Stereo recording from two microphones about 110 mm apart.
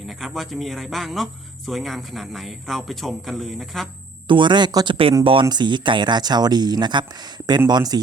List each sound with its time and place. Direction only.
0.1 s speech: centre (ahead or behind)
4.3 s speech: 45° right (ahead or behind)
5.2 s speech: 55° right (ahead or behind)
5.5 s speech: 45° right (ahead or behind)